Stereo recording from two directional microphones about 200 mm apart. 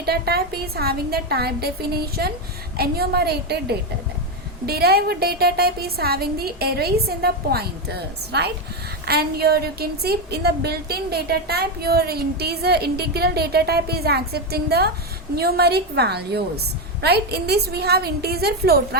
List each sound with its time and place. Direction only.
0.0 s a woman's voice: 50° right (ahead or behind)